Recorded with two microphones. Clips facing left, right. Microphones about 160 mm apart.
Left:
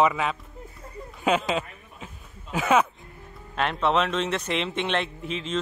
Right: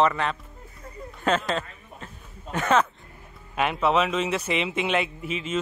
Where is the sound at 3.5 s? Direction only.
5° right (ahead or behind).